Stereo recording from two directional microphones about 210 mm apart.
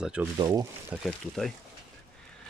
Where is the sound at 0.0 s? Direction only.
5° right (ahead or behind).